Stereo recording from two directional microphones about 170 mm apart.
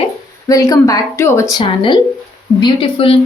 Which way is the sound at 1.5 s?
30° left (ahead or behind).